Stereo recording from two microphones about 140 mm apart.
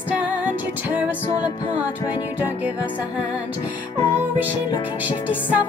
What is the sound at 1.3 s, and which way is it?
Music, 35° left (ahead or behind).